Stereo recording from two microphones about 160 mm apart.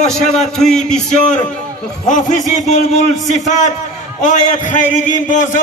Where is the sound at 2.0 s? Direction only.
55° left (ahead or behind).